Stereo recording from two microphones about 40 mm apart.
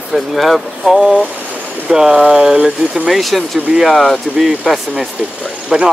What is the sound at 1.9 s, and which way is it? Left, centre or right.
Speech, right.